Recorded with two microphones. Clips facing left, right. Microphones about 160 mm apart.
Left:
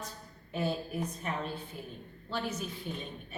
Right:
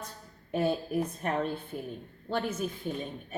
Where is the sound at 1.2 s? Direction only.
55° right (ahead or behind).